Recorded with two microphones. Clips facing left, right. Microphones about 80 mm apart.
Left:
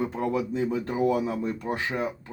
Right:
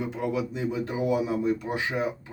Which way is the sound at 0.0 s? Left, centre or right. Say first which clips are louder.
Left 2 dB; left.